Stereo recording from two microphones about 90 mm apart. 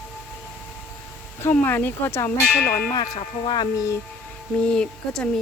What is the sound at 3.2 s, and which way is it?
Speech, 65° left (ahead or behind).